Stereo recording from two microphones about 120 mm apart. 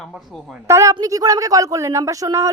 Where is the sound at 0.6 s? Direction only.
25° right (ahead or behind).